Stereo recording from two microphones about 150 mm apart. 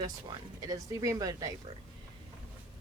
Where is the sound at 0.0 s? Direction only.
30° right (ahead or behind).